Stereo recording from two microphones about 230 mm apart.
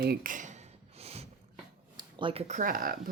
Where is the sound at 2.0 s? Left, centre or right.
Right.